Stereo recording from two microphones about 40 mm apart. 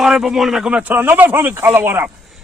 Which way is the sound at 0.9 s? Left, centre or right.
Right.